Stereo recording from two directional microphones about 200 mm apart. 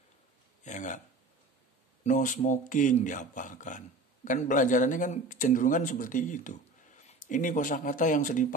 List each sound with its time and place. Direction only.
0.7 s speech: 40° left (ahead or behind)
2.0 s speech: 40° left (ahead or behind)